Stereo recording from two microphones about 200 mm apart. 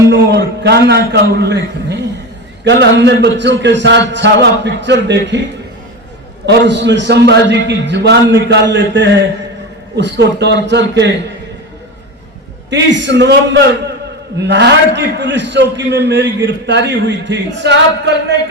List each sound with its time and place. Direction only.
0.1 s a man's voice: 60° right (ahead or behind)
12.7 s a man's voice: 65° right (ahead or behind)